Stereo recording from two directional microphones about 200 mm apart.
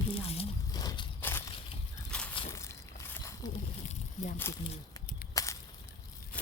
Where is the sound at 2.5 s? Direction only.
15° left (ahead or behind).